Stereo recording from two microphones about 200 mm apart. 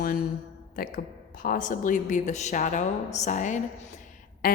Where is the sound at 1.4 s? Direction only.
40° left (ahead or behind).